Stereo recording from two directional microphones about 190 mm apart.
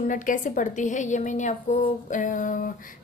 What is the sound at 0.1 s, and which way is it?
A woman's voice, 45° left (ahead or behind).